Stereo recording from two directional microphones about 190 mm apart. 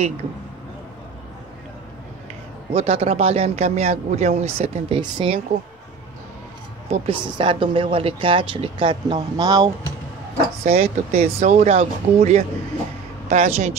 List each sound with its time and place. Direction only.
2.7 s speech: 35° right (ahead or behind)
6.9 s speech: 30° right (ahead or behind)
10.6 s speech: 35° right (ahead or behind)